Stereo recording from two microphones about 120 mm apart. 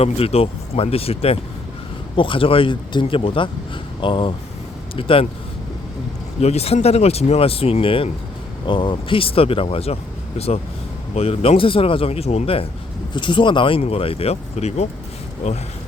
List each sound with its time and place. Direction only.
0.0 s speech: 55° left (ahead or behind)
6.4 s speech: 60° left (ahead or behind)
13.1 s speech: 40° left (ahead or behind); by 15.6 s 70° left (ahead or behind)